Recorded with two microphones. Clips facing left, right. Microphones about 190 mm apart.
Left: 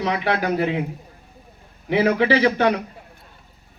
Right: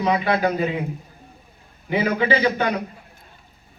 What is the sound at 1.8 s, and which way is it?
Speech, 70° left (ahead or behind).